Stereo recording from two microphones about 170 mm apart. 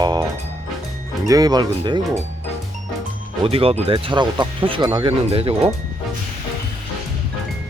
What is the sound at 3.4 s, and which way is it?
Speech, 35° right (ahead or behind).